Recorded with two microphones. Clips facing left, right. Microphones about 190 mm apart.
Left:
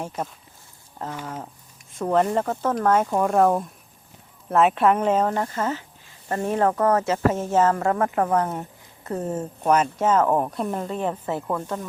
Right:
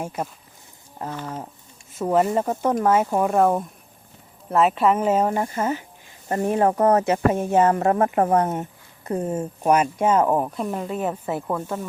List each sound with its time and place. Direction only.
0.0 s speech: 10° right (ahead or behind)
1.9 s speech: 5° right (ahead or behind)